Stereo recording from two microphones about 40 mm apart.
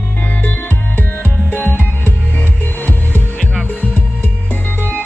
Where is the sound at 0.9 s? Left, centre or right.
Left.